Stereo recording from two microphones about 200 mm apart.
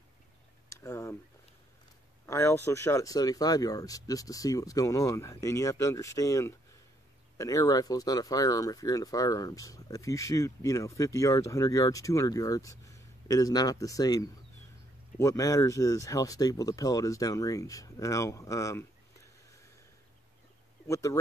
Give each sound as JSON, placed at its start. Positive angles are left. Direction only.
{"t": 0.7, "sound": "a sound", "side_deg": 15}
{"t": 2.2, "sound": "speech", "side_deg": 15}
{"t": 20.8, "sound": "speech", "side_deg": 15}